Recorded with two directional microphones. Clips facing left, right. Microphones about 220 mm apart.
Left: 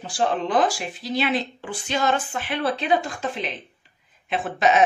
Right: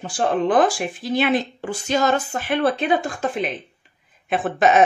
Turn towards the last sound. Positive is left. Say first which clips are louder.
# right 3 dB
turn(degrees=-50)  # may be behind; listen again after turning